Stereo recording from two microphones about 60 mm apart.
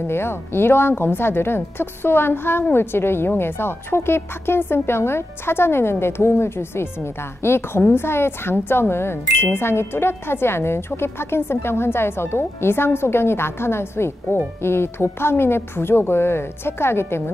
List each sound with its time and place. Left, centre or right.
0.0 s a woman's voice: left